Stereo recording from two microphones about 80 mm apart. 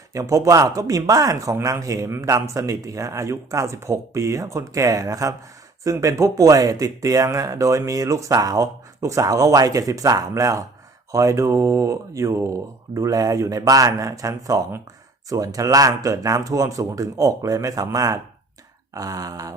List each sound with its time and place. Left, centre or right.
0.1 s speech: right